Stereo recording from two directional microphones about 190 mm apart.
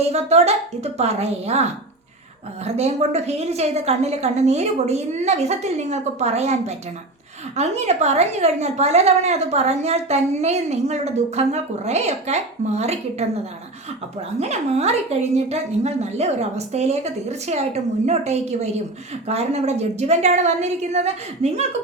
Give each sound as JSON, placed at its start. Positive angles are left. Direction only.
{"t": 0.0, "sound": "a woman's voice", "side_deg": -35}
{"t": 14.3, "sound": "a woman's voice", "side_deg": -35}